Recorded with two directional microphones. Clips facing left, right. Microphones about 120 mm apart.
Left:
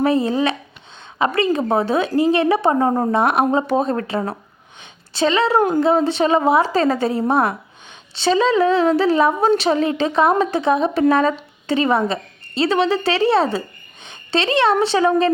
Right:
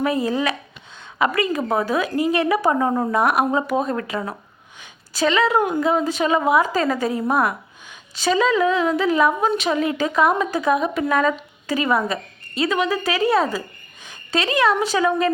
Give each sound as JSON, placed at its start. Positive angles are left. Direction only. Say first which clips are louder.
{"t": 0.0, "sound": "a woman's voice", "louder": "left 4 dB", "side_deg": 30}